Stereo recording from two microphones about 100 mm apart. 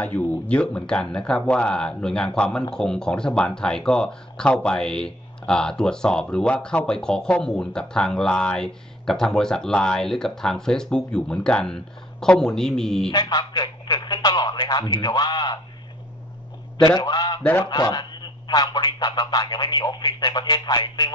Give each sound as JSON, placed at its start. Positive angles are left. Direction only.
{"t": 0.0, "sound": "speech", "side_deg": 15}
{"t": 13.1, "sound": "speech", "side_deg": 45}
{"t": 16.7, "sound": "speech", "side_deg": 40}